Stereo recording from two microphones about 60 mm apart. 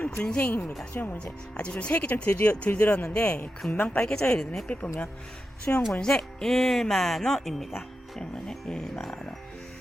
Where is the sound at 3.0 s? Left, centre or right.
Centre.